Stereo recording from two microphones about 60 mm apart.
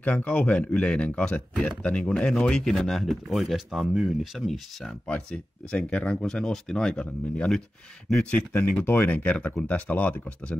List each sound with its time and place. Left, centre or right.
0.0 s speech: left
2.9 s speech: centre
5.0 s speech: centre
8.8 s speech: left
9.1 s speech: left